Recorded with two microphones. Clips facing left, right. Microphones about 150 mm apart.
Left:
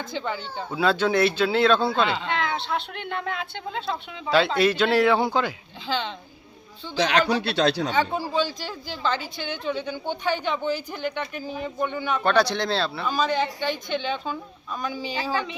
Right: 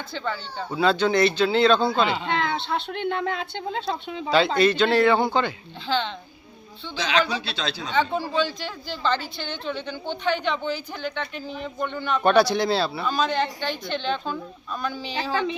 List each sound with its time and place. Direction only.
0.7 s speech: 5° left (ahead or behind)
1.9 s speech: 10° right (ahead or behind)
2.9 s speech: 30° right (ahead or behind)
4.3 s speech: centre (ahead or behind)
7.0 s speech: 60° left (ahead or behind)
8.1 s a woman's voice: 10° left (ahead or behind)
12.2 s speech: 10° right (ahead or behind)
13.1 s a woman's voice: 10° left (ahead or behind)